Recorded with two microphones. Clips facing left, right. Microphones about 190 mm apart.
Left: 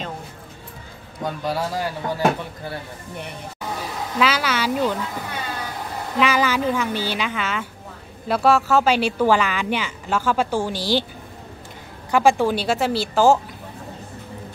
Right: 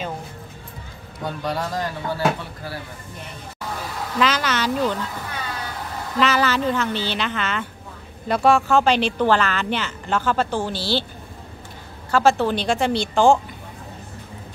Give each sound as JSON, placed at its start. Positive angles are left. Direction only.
{"t": 1.2, "sound": "speech", "side_deg": 5}
{"t": 2.0, "sound": "speech", "side_deg": 20}
{"t": 4.2, "sound": "speech", "side_deg": 10}
{"t": 6.1, "sound": "speech", "side_deg": 10}
{"t": 12.1, "sound": "speech", "side_deg": 15}